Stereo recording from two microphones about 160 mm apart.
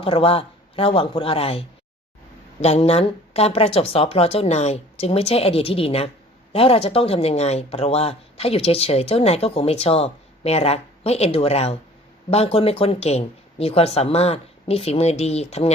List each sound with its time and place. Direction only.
0.0 s speech: 35° left (ahead or behind)